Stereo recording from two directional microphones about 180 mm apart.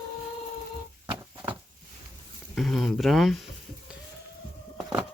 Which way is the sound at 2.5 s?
Centre (ahead or behind).